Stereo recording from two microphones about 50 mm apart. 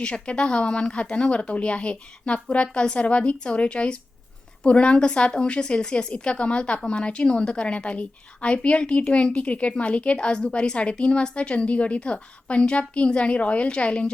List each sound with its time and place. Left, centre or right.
0.0 s a woman's voice: centre